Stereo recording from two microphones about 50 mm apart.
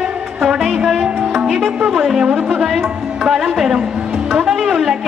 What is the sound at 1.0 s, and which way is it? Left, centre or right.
Music, centre.